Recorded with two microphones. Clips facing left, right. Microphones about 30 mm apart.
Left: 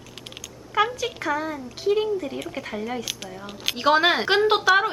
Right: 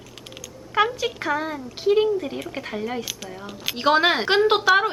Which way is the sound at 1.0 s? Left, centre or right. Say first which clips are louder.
Right 1 dB; centre.